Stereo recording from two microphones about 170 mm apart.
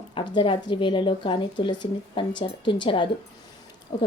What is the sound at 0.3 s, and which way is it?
Speech, 25° left (ahead or behind).